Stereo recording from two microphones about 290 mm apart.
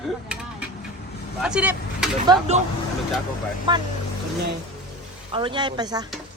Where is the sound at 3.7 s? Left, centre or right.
Centre.